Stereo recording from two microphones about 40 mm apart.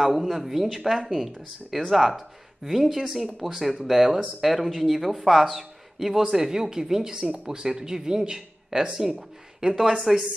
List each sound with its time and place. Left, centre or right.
0.0 s speech: centre